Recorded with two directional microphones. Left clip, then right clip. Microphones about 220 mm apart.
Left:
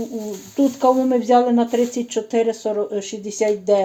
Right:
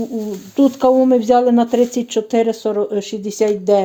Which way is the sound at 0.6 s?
40° right (ahead or behind).